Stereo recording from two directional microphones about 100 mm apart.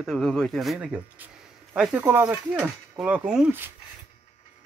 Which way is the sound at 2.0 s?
20° right (ahead or behind).